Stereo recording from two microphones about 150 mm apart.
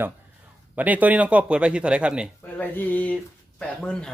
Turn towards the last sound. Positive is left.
turn(degrees=5)  # may be behind; listen again after turning